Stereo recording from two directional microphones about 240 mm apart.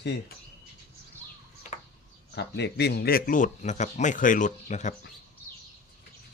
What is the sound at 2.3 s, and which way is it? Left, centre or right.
Speech, left.